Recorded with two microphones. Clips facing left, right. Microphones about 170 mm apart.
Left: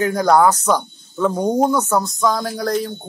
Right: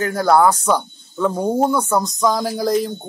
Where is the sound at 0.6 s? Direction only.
10° right (ahead or behind).